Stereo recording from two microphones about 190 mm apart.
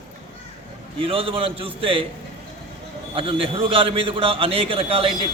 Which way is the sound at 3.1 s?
30° right (ahead or behind).